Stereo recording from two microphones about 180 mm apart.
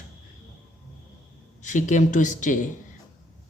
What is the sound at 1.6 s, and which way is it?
Speech, 45° left (ahead or behind).